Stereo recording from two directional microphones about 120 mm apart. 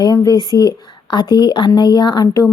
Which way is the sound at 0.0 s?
35° left (ahead or behind).